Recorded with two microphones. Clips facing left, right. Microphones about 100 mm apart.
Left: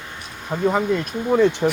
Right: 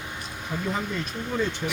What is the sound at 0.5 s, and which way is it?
Speech, 55° left (ahead or behind).